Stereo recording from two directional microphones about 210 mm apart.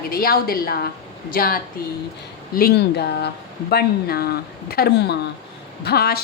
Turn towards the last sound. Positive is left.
turn(degrees=45)  # may be behind; listen again after turning